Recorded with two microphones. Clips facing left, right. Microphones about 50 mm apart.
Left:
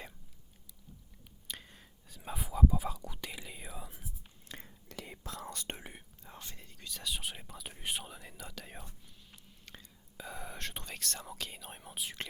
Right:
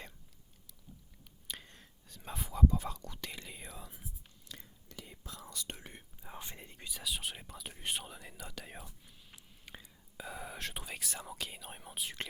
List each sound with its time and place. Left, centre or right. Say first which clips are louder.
1.5 s whispering: even; centre
4.6 s whispering: left 5 dB; left
5.5 s whispering: even; left
6.2 s speech: right 4 dB; centre
6.9 s speech: even; centre
9.3 s whispering: right 2 dB; centre